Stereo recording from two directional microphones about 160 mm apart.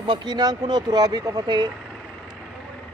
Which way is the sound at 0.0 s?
30° right (ahead or behind).